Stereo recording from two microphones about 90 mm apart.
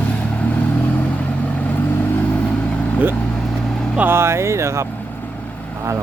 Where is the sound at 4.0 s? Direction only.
25° right (ahead or behind).